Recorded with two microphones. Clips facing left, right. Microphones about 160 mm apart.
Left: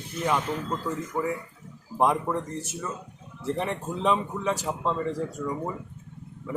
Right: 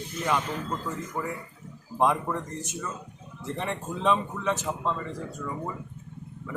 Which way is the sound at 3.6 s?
5° left (ahead or behind).